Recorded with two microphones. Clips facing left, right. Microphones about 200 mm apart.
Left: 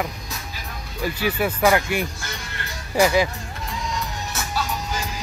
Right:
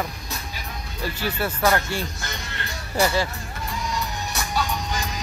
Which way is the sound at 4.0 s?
5° left (ahead or behind).